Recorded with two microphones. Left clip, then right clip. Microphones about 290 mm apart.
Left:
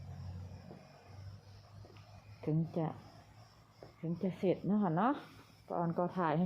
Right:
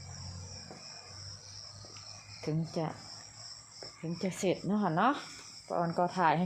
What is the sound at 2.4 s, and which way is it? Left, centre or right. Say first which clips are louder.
Speech: right 2 dB; centre.